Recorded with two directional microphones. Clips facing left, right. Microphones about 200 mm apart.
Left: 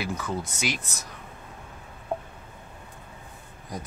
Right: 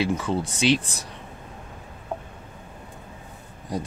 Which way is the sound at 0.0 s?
30° right (ahead or behind).